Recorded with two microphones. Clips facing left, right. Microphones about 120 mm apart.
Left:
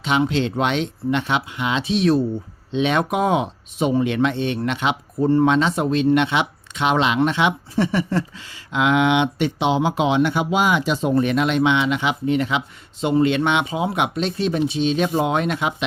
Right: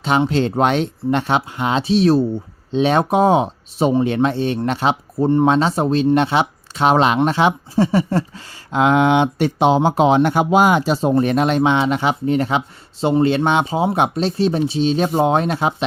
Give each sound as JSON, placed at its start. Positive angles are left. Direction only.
{"t": 0.3, "sound": "speech", "side_deg": -40}
{"t": 5.5, "sound": "speech", "side_deg": -35}